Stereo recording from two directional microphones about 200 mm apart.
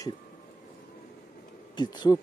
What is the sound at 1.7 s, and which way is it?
Speech, 20° left (ahead or behind).